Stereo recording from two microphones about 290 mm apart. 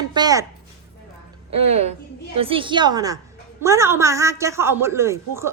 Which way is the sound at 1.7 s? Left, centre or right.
Right.